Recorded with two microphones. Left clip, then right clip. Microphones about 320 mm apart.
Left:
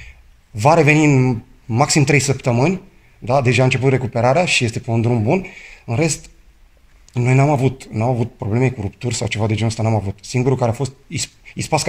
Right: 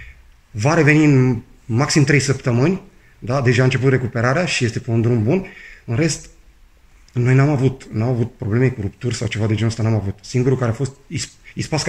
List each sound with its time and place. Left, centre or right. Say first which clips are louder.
0.6 s speech: left 2 dB; centre